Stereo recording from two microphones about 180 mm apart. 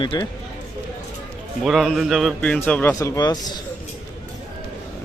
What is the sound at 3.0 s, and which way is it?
Speech, 20° left (ahead or behind).